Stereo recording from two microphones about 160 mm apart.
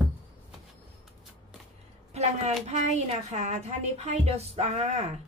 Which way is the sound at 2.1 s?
45° right (ahead or behind).